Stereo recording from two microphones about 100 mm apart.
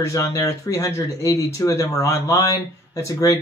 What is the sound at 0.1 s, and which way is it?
Speech, 30° left (ahead or behind).